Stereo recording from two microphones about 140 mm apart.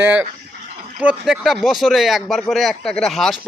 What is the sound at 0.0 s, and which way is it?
Speech, 15° right (ahead or behind).